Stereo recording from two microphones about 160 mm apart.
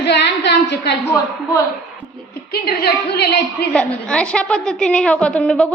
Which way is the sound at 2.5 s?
80° left.